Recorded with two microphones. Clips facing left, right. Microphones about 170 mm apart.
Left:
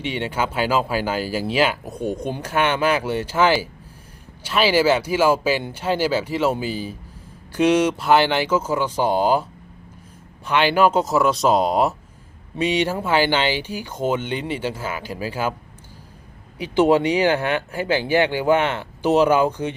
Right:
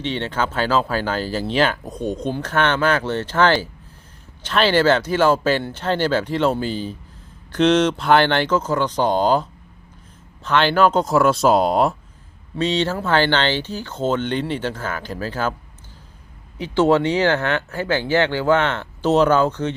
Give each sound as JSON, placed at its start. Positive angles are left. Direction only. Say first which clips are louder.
{"t": 0.0, "sound": "speech", "louder": "right 1 dB", "side_deg": 10}
{"t": 12.5, "sound": "speech", "louder": "even", "side_deg": 10}
{"t": 16.6, "sound": "speech", "louder": "even", "side_deg": 15}